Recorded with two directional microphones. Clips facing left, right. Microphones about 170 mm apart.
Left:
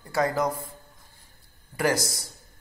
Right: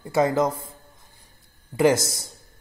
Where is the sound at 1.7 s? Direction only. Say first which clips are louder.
Right 6 dB; 20° right (ahead or behind).